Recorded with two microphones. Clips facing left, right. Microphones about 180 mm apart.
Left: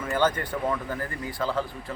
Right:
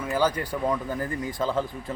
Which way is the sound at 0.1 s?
10° right (ahead or behind).